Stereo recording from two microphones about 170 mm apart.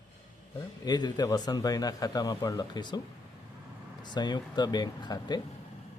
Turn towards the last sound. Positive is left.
turn(degrees=25)  # may be behind; listen again after turning